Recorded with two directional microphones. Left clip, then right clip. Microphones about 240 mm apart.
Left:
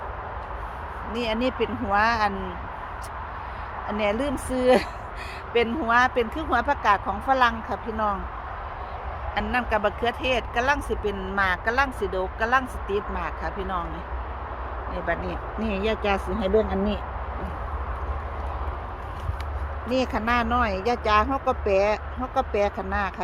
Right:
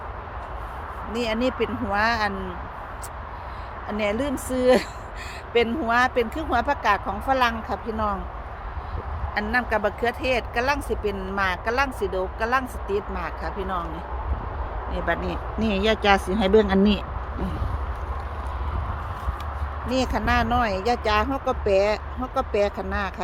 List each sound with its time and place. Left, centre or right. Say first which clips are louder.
1.1 s speech: right 1 dB; centre
3.8 s speech: even; centre
9.3 s speech: right 1 dB; centre
14.9 s speech: right 2 dB; centre; by 16.7 s right
19.9 s speech: right 1 dB; centre